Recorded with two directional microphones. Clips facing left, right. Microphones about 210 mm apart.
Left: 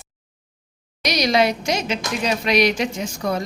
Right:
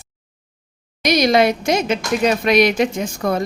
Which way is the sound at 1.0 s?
50° right (ahead or behind).